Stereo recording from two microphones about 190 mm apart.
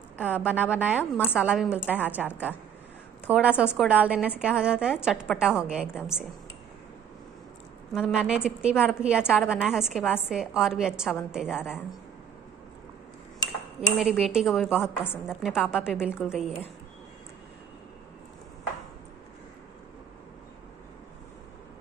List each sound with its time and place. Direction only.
0.2 s a woman's voice: 10° left (ahead or behind)
0.5 s a woman's voice: 5° right (ahead or behind)
7.9 s a woman's voice: centre (ahead or behind)
13.7 s a woman's voice: 5° right (ahead or behind)